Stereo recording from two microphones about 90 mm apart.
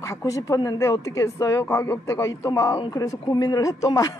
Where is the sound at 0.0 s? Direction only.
35° left (ahead or behind).